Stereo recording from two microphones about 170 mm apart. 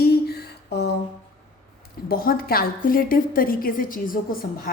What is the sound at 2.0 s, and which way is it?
A woman's voice, 60° left (ahead or behind).